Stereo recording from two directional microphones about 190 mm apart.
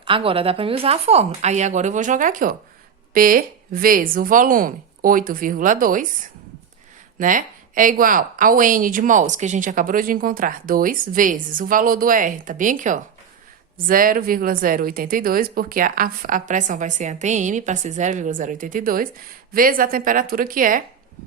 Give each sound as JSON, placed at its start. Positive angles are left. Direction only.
{"t": 0.0, "sound": "a woman's voice", "side_deg": -30}
{"t": 7.2, "sound": "speech", "side_deg": -45}